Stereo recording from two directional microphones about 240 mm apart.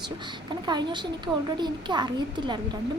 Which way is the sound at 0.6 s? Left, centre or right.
Centre.